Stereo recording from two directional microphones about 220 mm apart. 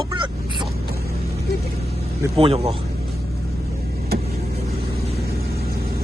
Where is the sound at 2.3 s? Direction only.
25° right (ahead or behind).